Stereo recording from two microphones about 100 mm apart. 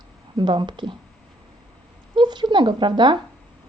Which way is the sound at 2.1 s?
50° right (ahead or behind).